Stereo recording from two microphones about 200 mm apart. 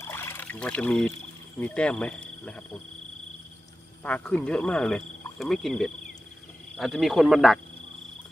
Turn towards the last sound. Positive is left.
turn(degrees=0)  # may be behind; listen again after turning